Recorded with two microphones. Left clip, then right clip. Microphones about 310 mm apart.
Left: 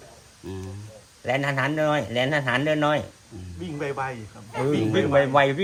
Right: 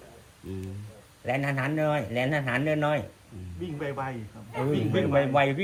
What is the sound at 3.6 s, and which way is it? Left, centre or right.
Speech, left.